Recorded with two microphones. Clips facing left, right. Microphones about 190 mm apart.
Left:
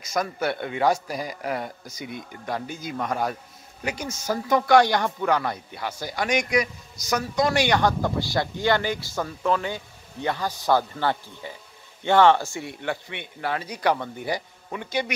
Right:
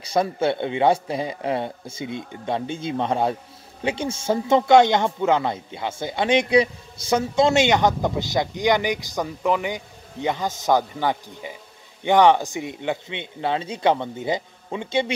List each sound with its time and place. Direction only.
0.0 s speech: 30° right (ahead or behind)